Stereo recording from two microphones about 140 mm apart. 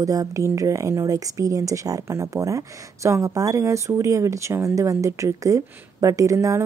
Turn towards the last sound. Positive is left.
turn(degrees=-20)  # may be behind; listen again after turning